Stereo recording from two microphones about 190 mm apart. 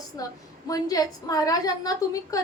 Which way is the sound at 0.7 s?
20° left (ahead or behind).